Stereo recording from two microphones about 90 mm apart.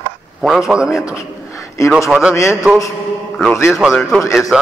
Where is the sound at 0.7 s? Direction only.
10° right (ahead or behind).